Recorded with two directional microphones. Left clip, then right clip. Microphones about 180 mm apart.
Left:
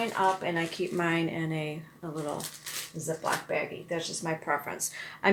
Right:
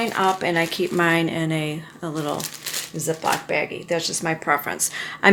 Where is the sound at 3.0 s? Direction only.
55° right (ahead or behind).